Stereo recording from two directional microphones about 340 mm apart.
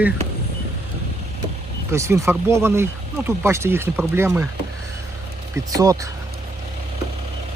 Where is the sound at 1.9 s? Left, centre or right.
Centre.